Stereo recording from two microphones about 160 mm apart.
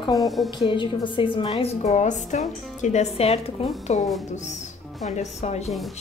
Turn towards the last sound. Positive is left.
turn(degrees=45)  # may be behind; listen again after turning